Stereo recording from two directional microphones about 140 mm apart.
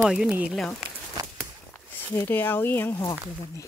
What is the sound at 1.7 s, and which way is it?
Speech, 15° left (ahead or behind).